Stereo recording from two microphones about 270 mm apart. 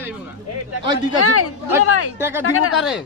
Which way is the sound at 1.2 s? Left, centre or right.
Left.